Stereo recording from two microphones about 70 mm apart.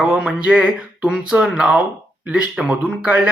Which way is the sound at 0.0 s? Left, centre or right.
Centre.